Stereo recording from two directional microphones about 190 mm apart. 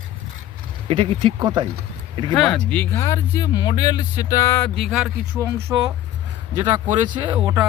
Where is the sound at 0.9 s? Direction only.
30° right (ahead or behind).